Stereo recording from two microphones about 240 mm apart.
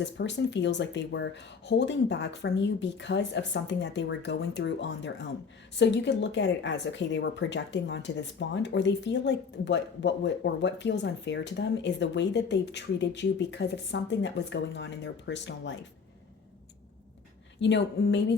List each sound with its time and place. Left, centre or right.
0.0 s speech: left
17.6 s speech: left